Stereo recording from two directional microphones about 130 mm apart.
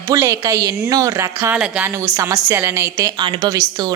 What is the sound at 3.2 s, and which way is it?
Speech, 35° right (ahead or behind).